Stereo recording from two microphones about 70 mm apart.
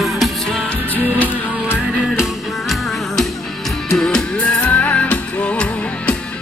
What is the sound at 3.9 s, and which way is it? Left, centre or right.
Music, centre.